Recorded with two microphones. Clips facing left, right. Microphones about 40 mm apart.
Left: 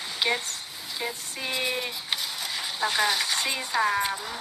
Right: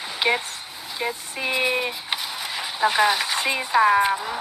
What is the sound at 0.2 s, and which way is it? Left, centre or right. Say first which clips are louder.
Speech: right 5 dB; right.